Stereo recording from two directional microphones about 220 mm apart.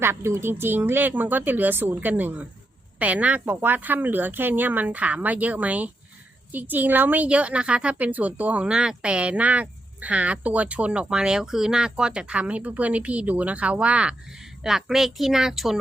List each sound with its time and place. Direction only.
0.0 s a woman's voice: 10° right (ahead or behind)